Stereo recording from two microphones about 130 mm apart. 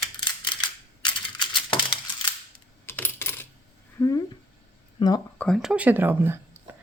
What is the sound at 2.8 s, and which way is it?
Coin, 15° left (ahead or behind).